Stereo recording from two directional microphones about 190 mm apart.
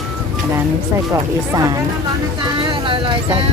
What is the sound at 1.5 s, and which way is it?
Speech, 20° right (ahead or behind).